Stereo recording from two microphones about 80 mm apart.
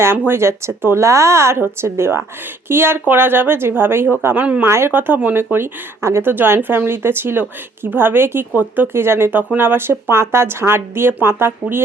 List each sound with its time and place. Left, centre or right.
0.0 s speech: right